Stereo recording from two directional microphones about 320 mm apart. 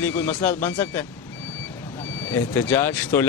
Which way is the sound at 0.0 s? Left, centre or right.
Centre.